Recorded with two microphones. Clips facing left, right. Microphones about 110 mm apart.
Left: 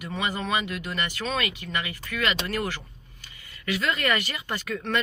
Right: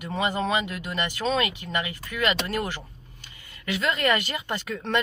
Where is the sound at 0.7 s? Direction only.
15° right (ahead or behind).